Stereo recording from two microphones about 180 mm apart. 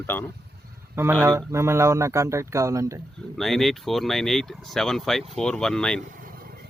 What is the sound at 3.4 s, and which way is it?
Speech, centre (ahead or behind).